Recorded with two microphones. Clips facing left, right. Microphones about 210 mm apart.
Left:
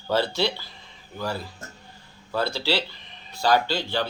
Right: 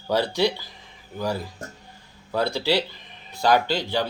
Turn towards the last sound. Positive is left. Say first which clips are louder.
# right 1 dB
turn(degrees=-15)  # may be behind; listen again after turning